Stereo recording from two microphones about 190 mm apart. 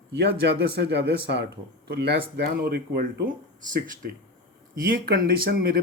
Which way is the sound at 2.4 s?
55° right (ahead or behind).